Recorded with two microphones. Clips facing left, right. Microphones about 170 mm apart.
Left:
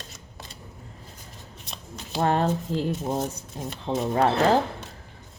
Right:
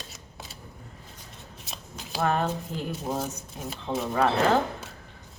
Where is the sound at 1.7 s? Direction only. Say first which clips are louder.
Left 1 dB; centre (ahead or behind).